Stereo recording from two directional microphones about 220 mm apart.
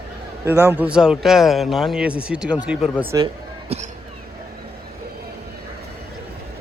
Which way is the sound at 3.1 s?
20° right (ahead or behind).